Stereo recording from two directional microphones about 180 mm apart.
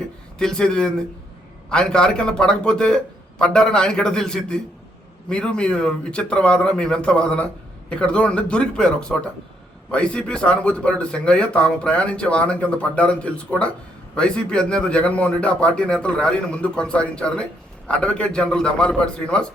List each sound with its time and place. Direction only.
0.3 s speech: 5° left (ahead or behind)